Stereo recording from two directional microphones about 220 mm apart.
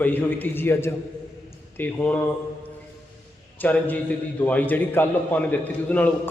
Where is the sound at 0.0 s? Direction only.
10° left (ahead or behind).